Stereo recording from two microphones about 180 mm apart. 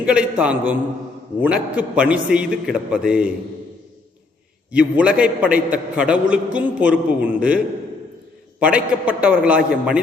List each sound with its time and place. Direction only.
0.0 s a man's voice: 5° right (ahead or behind)
4.7 s a man's voice: 5° right (ahead or behind)